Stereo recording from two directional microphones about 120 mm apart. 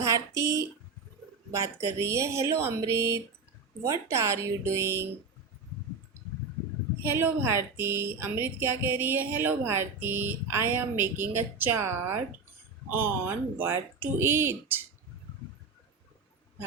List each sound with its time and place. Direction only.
0.0 s a woman's voice: 25° right (ahead or behind)
7.0 s a woman's voice: 20° right (ahead or behind)